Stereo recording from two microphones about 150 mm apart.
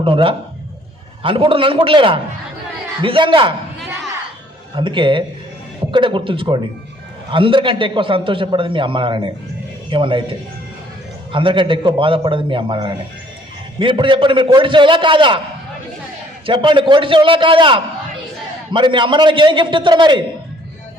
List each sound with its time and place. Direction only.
0.0 s a man's voice: 35° right (ahead or behind)
4.7 s a man's voice: 35° right (ahead or behind)
16.5 s a man's voice: 35° right (ahead or behind)